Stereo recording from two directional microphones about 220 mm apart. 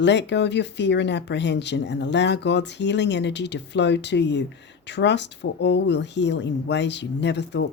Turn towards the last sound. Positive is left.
turn(degrees=50)  # may be behind; listen again after turning